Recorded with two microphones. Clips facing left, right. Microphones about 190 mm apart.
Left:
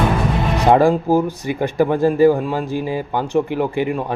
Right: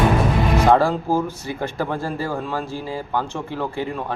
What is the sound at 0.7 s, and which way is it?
Speech, 15° left (ahead or behind).